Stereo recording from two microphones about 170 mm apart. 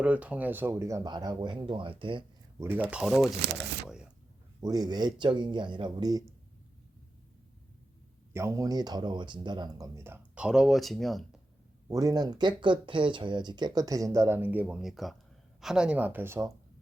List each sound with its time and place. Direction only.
0.0 s speech: 10° right (ahead or behind); by 2.2 s 30° right (ahead or behind)
2.6 s speech: 10° right (ahead or behind)
3.4 s speech: 90° right
4.6 s speech: 25° right (ahead or behind)
8.3 s speech: 15° right (ahead or behind); by 11.3 s centre (ahead or behind)
11.9 s speech: 20° right (ahead or behind)